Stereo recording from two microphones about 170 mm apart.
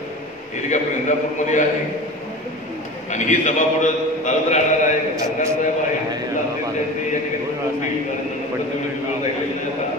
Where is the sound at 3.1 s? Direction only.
45° left (ahead or behind).